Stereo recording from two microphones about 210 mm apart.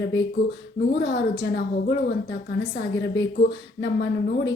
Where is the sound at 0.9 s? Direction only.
55° left (ahead or behind).